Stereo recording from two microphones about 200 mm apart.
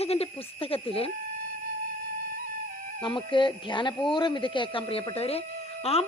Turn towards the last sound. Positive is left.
turn(degrees=30)  # may be behind; listen again after turning